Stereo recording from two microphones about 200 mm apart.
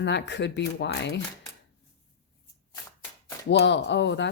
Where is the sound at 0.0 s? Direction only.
60° left (ahead or behind).